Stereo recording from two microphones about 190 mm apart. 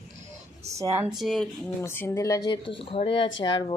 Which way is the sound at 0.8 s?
15° right (ahead or behind).